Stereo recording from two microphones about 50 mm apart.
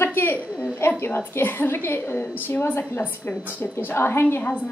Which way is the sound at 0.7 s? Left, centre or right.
Left.